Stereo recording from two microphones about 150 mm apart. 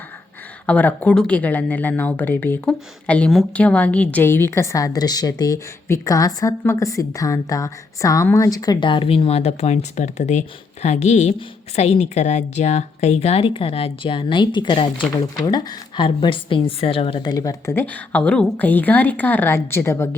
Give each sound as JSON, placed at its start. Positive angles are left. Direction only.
{"t": 0.7, "sound": "a woman's voice", "side_deg": 10}